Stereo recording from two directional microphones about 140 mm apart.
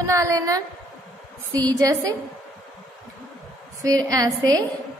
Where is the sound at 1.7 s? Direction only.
25° right (ahead or behind).